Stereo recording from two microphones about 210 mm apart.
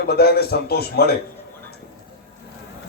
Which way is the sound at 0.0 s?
50° left (ahead or behind).